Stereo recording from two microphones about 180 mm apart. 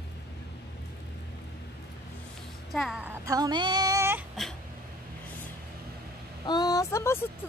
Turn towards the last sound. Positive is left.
turn(degrees=15)  # may be behind; listen again after turning